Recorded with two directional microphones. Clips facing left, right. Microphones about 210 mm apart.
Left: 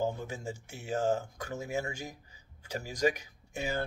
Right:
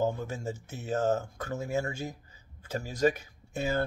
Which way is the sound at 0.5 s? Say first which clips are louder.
Right 3 dB; 10° left (ahead or behind).